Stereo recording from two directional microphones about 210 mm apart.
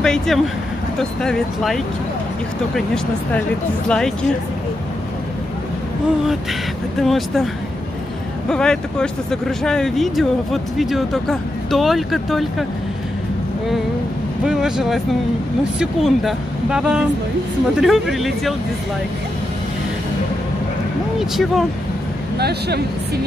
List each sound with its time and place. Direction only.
0.0 s speech: 5° left (ahead or behind)
7.0 s speech: centre (ahead or behind)
8.5 s speech: 5° left (ahead or behind)
14.4 s speech: 5° right (ahead or behind)
21.2 s speech: centre (ahead or behind)
22.4 s speech: 50° right (ahead or behind)